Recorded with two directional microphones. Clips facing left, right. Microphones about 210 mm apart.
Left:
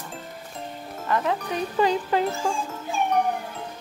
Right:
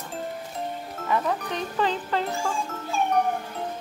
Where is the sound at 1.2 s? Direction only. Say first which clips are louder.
Left 2 dB; 5° left (ahead or behind).